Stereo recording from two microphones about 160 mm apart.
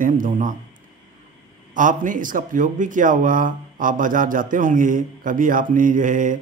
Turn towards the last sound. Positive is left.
turn(degrees=-55)  # may be behind; listen again after turning